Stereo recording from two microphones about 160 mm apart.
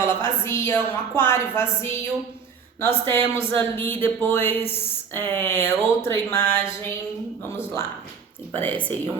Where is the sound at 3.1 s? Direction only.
15° left (ahead or behind).